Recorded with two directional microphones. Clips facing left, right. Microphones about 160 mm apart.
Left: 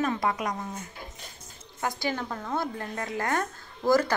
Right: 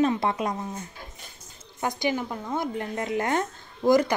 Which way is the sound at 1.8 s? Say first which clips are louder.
Right 3 dB; 20° right (ahead or behind).